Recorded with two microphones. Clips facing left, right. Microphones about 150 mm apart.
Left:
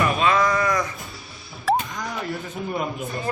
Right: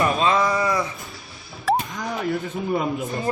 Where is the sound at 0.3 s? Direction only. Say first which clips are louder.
Even; 15° right (ahead or behind).